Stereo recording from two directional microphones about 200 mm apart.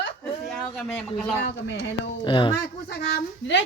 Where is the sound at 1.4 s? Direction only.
60° left (ahead or behind).